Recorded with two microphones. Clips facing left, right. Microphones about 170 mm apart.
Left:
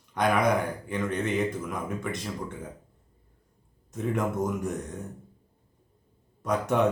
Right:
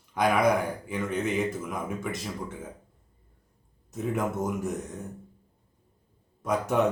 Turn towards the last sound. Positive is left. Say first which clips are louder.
# even
turn(degrees=-5)  # may be behind; listen again after turning